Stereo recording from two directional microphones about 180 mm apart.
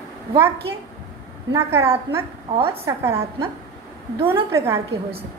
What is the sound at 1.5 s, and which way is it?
Speech, 15° right (ahead or behind).